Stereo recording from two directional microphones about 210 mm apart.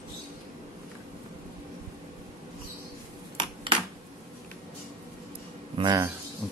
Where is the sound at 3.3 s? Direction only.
25° right (ahead or behind).